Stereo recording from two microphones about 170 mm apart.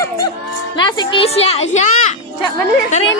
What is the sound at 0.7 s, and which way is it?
A child's voice, 25° left (ahead or behind).